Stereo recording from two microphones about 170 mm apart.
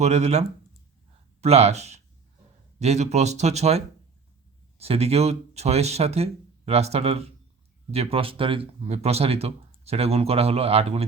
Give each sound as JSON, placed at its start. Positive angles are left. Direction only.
{"t": 0.0, "sound": "speech", "side_deg": -40}